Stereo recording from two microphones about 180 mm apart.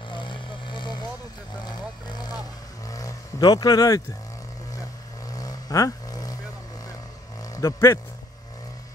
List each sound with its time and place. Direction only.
0.1 s vehicle: 25° left (ahead or behind)
5.3 s vehicle: 20° left (ahead or behind)
7.5 s speech: 15° left (ahead or behind)